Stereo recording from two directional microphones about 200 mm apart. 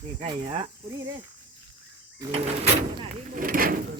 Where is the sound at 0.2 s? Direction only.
25° right (ahead or behind).